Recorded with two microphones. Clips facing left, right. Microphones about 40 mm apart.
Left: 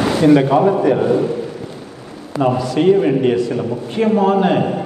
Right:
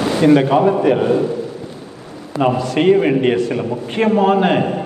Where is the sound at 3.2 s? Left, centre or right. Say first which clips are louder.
Even; right.